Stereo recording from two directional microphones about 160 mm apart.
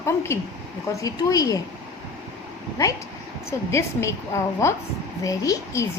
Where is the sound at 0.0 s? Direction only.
15° left (ahead or behind).